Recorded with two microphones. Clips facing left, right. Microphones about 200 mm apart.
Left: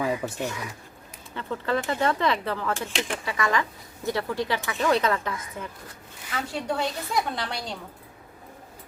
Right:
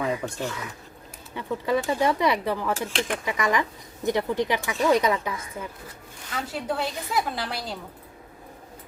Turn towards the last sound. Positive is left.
turn(degrees=-5)  # may be behind; listen again after turning